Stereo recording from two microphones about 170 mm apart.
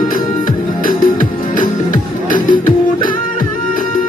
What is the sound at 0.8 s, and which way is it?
Music, 55° left (ahead or behind).